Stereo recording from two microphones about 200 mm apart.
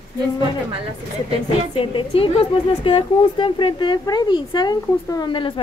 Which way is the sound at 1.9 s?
25° left (ahead or behind).